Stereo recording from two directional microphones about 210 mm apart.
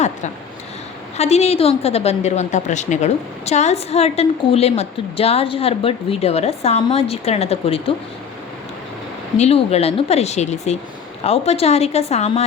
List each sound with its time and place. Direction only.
1.1 s a woman's voice: 30° left (ahead or behind)
9.4 s a woman's voice: 30° left (ahead or behind)